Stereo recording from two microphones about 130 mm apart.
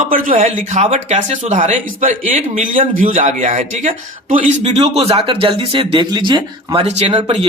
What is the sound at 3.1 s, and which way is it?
Speech, 70° right (ahead or behind).